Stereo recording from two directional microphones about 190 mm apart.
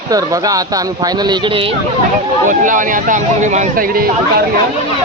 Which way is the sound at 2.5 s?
45° right (ahead or behind).